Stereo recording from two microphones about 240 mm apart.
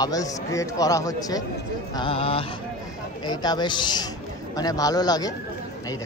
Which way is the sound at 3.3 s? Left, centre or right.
Centre.